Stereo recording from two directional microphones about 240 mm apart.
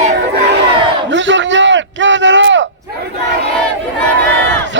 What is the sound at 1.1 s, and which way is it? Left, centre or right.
Chop, right.